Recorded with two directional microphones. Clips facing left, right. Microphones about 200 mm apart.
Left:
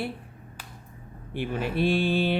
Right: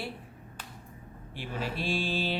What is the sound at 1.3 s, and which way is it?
Speech, 55° left (ahead or behind).